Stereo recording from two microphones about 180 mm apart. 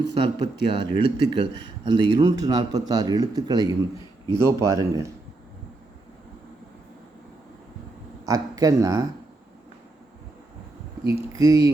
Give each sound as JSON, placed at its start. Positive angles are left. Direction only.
{"t": 0.0, "sound": "a man's voice", "side_deg": -25}
{"t": 8.3, "sound": "a man's voice", "side_deg": -20}
{"t": 11.0, "sound": "a man's voice", "side_deg": -15}